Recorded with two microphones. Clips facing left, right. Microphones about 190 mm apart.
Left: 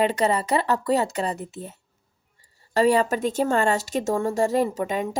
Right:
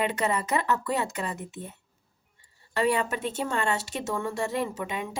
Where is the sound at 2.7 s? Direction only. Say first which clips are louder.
Left 6 dB; 35° left (ahead or behind).